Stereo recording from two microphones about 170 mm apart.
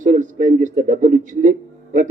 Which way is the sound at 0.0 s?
50° right (ahead or behind).